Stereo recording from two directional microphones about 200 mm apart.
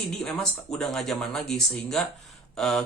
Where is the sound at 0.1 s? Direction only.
Centre (ahead or behind).